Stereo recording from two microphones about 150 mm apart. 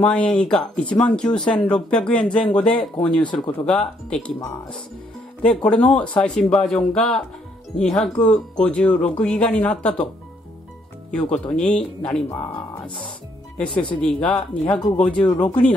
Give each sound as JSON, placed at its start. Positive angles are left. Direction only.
{"t": 0.0, "sound": "speech", "side_deg": 10}
{"t": 5.4, "sound": "speech", "side_deg": 5}
{"t": 11.1, "sound": "speech", "side_deg": 5}
{"t": 13.7, "sound": "speech", "side_deg": 10}